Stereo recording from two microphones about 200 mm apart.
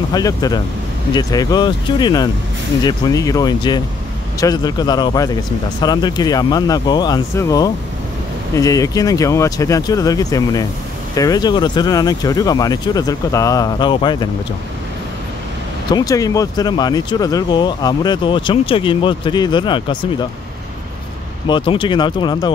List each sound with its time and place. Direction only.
0.1 s speech: 20° left (ahead or behind)
15.9 s speech: 20° left (ahead or behind)
21.5 s speech: 25° left (ahead or behind)